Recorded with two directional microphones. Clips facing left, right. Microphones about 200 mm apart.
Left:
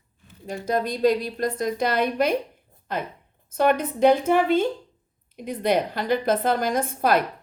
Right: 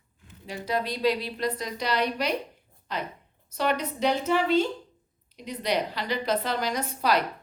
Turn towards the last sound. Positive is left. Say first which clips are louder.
# left 4 dB
turn(degrees=50)  # may be behind; listen again after turning